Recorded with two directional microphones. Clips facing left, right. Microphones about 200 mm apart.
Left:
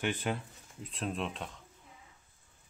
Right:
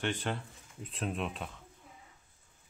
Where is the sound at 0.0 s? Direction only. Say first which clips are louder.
Left 1 dB; 5° left (ahead or behind).